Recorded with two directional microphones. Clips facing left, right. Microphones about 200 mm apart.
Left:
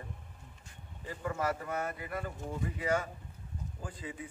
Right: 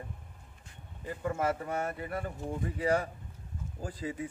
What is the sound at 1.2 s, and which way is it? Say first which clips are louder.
A man's voice: right 3 dB; 25° right (ahead or behind).